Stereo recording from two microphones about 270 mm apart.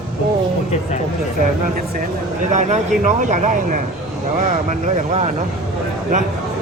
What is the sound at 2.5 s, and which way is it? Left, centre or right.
Speech, right.